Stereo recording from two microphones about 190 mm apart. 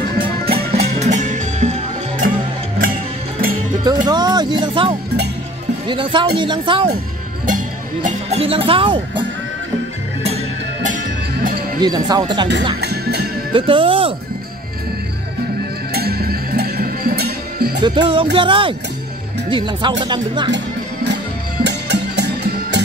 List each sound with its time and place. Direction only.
0.2 s music: 30° right (ahead or behind)
3.8 s music: 20° right (ahead or behind)
5.9 s speech: 25° right (ahead or behind)
7.4 s music: 45° right (ahead or behind); by 9.2 s 25° right (ahead or behind)
10.2 s music: 35° right (ahead or behind)
11.8 s speech: 20° right (ahead or behind)
12.8 s music: 55° right (ahead or behind)
13.5 s speech: 25° right (ahead or behind)
15.9 s music: 55° right (ahead or behind)
17.8 s speech: 25° right (ahead or behind)
20.5 s music: 65° right (ahead or behind)